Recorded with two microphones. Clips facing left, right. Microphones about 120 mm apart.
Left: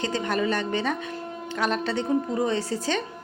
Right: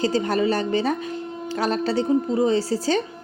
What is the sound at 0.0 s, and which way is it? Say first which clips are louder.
A woman's voice: right 5 dB; 35° right (ahead or behind).